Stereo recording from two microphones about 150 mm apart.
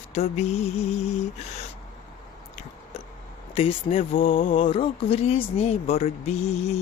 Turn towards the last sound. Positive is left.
turn(degrees=45)  # may be behind; listen again after turning